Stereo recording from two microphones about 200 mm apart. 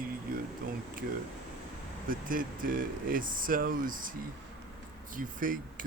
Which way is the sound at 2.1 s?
45° right (ahead or behind).